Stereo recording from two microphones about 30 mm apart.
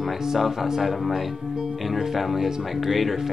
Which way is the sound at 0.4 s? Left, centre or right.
Centre.